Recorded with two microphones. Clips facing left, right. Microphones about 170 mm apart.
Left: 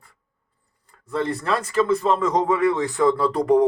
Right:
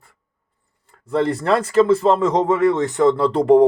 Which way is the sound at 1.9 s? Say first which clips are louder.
Right 4 dB; 25° right (ahead or behind).